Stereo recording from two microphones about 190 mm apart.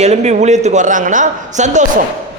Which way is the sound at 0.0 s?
35° right (ahead or behind).